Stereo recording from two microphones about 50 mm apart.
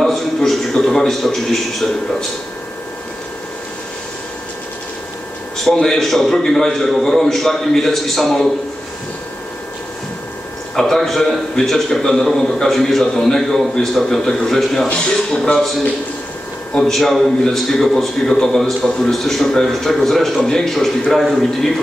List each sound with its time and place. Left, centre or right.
0.0 s a sound: centre
5.6 s a man's voice: centre
10.8 s a man's voice: centre
14.9 s a man's voice: centre
16.7 s a man's voice: centre